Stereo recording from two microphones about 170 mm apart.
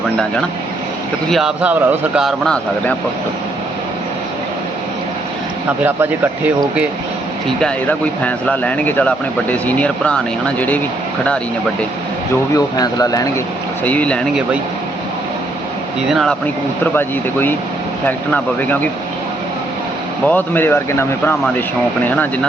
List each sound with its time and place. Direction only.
1.3 s speech: centre (ahead or behind)
7.6 s speech: 10° left (ahead or behind)
12.5 s speech: 20° left (ahead or behind)
13.8 s speech: 10° left (ahead or behind)
16.0 s speech: centre (ahead or behind)
16.8 s speech: 10° left (ahead or behind)
20.2 s speech: 10° left (ahead or behind)